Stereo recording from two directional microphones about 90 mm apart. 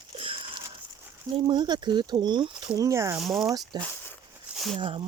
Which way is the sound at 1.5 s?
55° right (ahead or behind).